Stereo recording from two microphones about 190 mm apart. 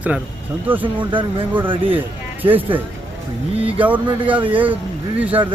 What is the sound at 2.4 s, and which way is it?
Speech, 10° right (ahead or behind).